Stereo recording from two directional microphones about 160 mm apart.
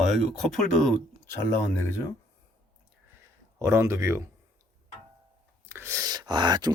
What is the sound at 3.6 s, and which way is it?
Speech, 15° right (ahead or behind).